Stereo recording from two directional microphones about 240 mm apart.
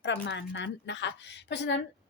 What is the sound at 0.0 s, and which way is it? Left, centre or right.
A woman's voice, left.